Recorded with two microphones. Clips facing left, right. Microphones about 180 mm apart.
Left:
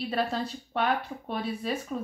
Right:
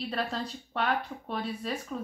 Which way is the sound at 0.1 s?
5° left (ahead or behind).